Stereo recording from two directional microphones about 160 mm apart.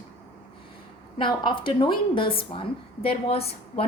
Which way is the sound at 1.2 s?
30° left (ahead or behind).